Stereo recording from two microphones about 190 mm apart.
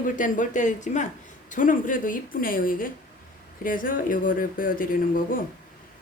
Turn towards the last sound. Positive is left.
turn(degrees=50)  # may be behind; listen again after turning